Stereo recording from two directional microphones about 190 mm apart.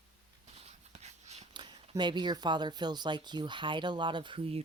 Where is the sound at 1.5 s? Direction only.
25° right (ahead or behind).